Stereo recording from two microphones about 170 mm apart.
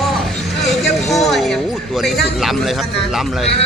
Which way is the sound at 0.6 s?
Centre (ahead or behind).